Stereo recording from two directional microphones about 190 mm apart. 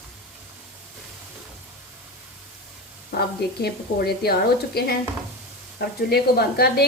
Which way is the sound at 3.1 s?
55° left (ahead or behind).